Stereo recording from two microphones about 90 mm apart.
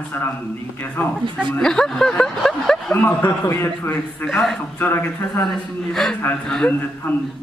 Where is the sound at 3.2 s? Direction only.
35° left (ahead or behind).